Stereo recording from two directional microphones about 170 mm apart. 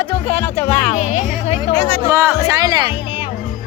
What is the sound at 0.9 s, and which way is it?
Music, 45° left (ahead or behind).